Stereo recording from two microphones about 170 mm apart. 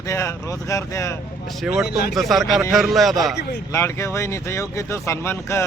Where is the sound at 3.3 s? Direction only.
75° left (ahead or behind).